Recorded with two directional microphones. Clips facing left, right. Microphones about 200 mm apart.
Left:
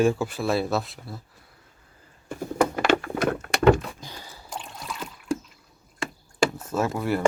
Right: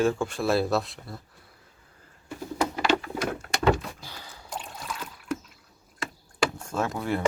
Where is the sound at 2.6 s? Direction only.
50° left (ahead or behind).